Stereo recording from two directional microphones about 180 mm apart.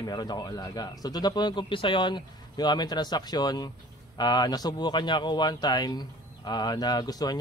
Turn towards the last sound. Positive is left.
turn(degrees=20)  # may be behind; listen again after turning